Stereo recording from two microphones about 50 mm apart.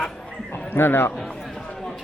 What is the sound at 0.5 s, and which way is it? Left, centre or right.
Speech, left.